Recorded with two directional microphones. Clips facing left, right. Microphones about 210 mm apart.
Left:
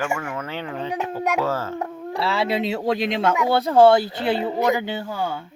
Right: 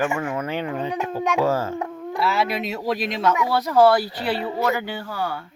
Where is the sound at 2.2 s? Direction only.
30° left (ahead or behind).